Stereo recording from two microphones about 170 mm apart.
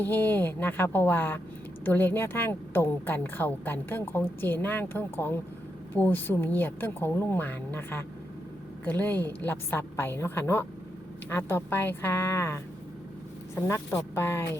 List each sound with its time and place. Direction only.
0.0 s a woman's voice: 10° left (ahead or behind)
13.6 s a woman's voice: 15° left (ahead or behind)